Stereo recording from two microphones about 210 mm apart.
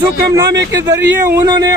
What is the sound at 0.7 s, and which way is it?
Speech, 15° right (ahead or behind).